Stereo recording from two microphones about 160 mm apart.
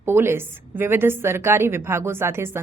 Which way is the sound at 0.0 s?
15° right (ahead or behind).